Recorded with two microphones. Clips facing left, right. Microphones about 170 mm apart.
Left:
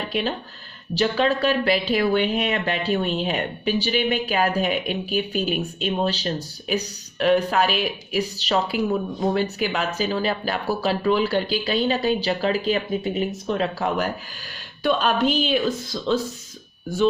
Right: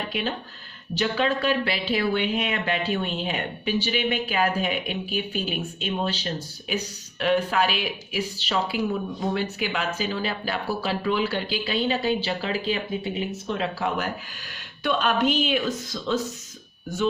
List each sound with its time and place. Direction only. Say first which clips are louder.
0.1 s speech: left 3 dB; 40° left (ahead or behind)